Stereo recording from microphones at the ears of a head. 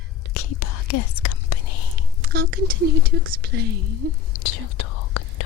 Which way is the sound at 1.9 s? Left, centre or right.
Right.